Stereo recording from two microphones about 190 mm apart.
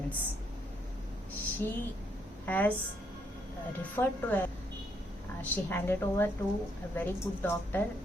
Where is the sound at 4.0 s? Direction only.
15° left (ahead or behind).